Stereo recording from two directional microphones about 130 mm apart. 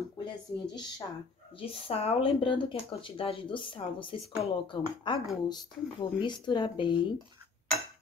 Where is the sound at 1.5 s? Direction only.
45° left (ahead or behind).